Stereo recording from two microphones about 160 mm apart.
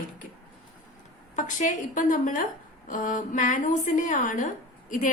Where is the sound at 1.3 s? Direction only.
50° left (ahead or behind).